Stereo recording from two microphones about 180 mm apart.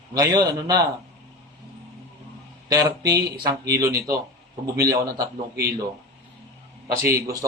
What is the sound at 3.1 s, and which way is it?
A man's voice, 20° right (ahead or behind).